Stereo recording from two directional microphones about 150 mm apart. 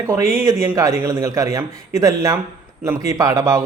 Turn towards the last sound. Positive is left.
turn(degrees=-20)  # may be behind; listen again after turning